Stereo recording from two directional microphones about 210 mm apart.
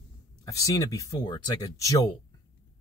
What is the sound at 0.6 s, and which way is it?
Speech, 15° left (ahead or behind).